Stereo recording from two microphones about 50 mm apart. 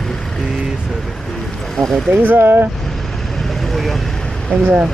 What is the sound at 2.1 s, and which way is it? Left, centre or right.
Speech, right.